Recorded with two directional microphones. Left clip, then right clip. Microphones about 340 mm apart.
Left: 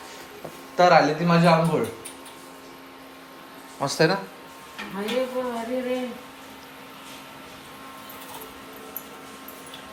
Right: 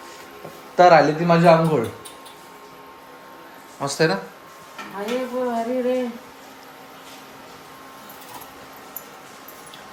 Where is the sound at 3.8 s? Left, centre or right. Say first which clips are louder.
Right 1 dB; centre.